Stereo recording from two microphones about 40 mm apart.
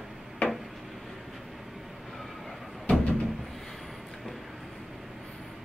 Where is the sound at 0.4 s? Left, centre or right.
Left.